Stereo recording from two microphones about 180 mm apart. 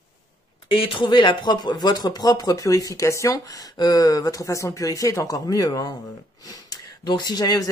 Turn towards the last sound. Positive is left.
turn(degrees=20)  # may be behind; listen again after turning